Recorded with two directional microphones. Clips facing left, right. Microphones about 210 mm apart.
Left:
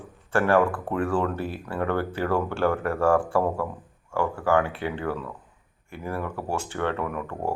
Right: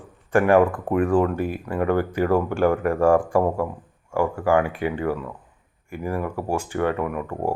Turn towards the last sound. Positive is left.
turn(degrees=-10)  # may be behind; listen again after turning